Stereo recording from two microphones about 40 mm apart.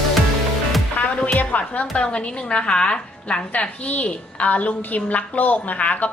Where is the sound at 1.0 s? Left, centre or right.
Left.